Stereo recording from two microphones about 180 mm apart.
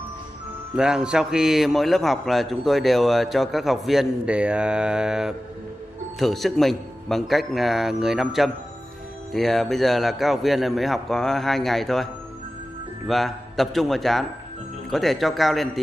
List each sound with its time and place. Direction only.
0.7 s a man's voice: 5° right (ahead or behind)